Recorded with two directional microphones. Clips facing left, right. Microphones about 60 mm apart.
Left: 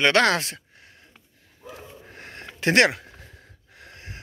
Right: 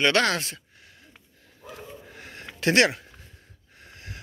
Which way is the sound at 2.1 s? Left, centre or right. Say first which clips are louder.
Left 2 dB; left.